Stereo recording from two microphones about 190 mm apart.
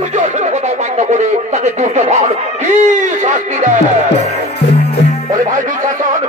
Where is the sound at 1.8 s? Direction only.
40° right (ahead or behind).